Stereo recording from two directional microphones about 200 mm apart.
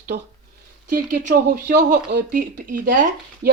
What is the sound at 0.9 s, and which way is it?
Speech, 45° right (ahead or behind).